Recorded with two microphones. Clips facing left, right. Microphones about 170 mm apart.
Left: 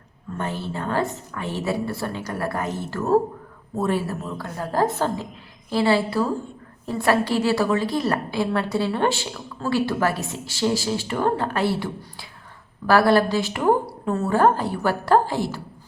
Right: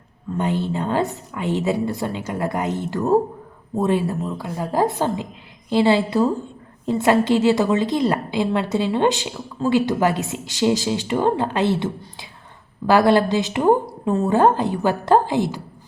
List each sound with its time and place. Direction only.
0.3 s a woman's voice: 20° right (ahead or behind)
12.9 s a woman's voice: 20° right (ahead or behind)